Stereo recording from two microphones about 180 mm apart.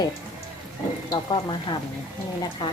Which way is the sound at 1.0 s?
25° left (ahead or behind).